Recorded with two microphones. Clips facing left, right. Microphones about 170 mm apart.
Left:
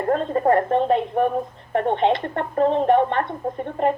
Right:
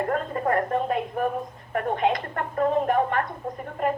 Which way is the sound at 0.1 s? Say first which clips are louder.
Left 6 dB; 30° left (ahead or behind).